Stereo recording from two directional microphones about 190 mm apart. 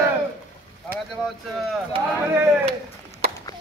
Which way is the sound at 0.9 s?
10° right (ahead or behind).